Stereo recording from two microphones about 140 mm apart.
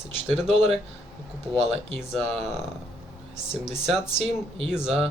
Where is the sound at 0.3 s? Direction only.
5° right (ahead or behind).